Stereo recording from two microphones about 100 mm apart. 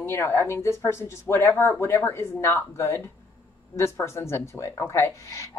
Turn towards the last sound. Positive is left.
turn(degrees=30)  # may be behind; listen again after turning